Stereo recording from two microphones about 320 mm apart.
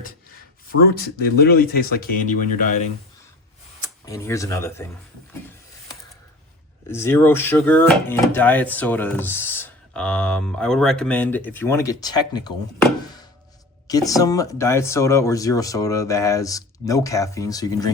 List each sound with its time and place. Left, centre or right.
0.7 s speech: left
3.8 s speech: centre
6.8 s speech: centre
13.8 s speech: centre